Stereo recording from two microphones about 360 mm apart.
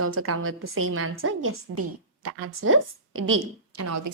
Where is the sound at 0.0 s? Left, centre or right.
Right.